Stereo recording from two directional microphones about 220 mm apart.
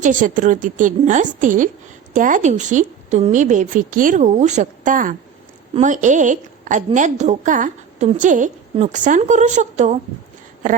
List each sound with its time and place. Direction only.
0.0 s a woman's voice: 35° right (ahead or behind)